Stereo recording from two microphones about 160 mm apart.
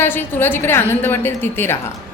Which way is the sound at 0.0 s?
15° left (ahead or behind).